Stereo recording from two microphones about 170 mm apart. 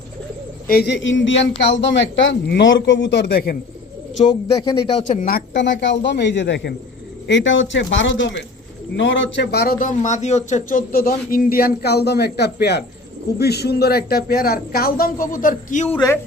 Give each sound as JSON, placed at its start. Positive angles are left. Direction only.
{"t": 0.7, "sound": "a man's voice", "side_deg": 80}
{"t": 4.3, "sound": "speech", "side_deg": 30}
{"t": 5.0, "sound": "a man's voice", "side_deg": 50}